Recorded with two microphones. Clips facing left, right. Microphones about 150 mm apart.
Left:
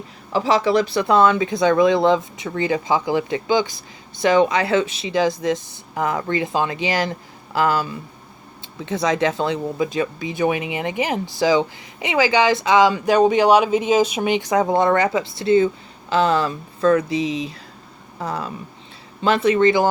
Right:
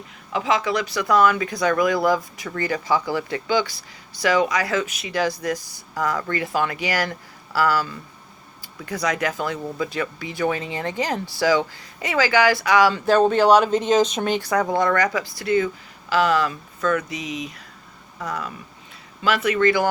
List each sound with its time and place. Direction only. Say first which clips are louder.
0.3 s speech: left 5 dB; 35° left (ahead or behind)